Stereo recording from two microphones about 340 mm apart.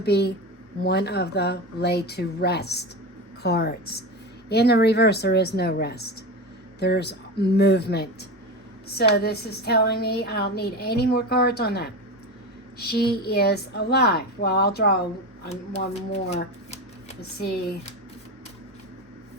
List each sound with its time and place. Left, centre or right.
0.0 s a woman's voice: left